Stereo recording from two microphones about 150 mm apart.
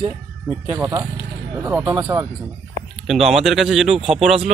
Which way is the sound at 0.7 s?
20° right (ahead or behind).